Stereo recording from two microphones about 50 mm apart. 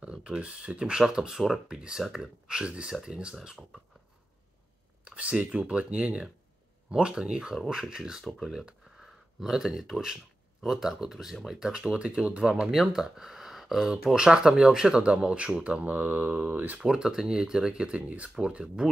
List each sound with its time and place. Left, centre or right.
0.0 s speech: right
5.0 s speech: right
16.7 s speech: centre